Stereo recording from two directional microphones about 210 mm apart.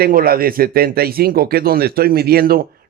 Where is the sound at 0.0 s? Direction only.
45° right (ahead or behind).